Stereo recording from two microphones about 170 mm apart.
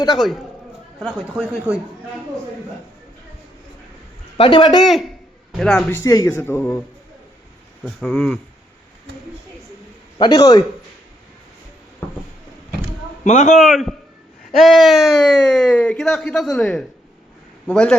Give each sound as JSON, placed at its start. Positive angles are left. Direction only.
{"t": 1.0, "sound": "speech", "side_deg": -5}
{"t": 4.4, "sound": "speech", "side_deg": 30}
{"t": 4.8, "sound": "a man's voice", "side_deg": 0}
{"t": 6.0, "sound": "speech", "side_deg": 20}
{"t": 7.9, "sound": "speech", "side_deg": 5}
{"t": 10.2, "sound": "a man's voice", "side_deg": 25}
{"t": 13.2, "sound": "a man's voice", "side_deg": 45}
{"t": 13.6, "sound": "speech", "side_deg": 0}